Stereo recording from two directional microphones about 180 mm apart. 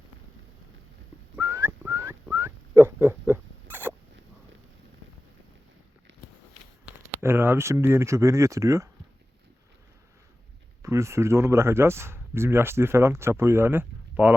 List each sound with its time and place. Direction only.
1.4 s whistling: 15° right (ahead or behind)
6.8 s speech: 15° right (ahead or behind)
10.8 s speech: 15° right (ahead or behind)